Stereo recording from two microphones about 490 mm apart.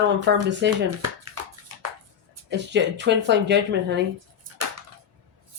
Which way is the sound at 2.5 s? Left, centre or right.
Right.